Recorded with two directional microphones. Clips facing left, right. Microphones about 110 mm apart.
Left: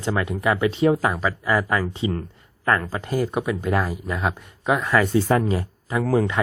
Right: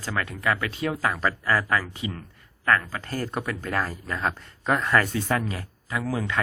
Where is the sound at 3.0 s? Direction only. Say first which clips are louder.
Left 6 dB; 15° left (ahead or behind).